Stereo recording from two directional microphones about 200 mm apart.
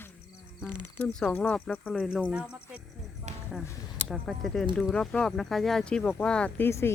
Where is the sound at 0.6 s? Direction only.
5° left (ahead or behind).